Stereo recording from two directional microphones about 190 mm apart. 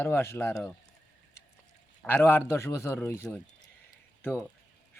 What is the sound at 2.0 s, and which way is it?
Speech, 10° left (ahead or behind).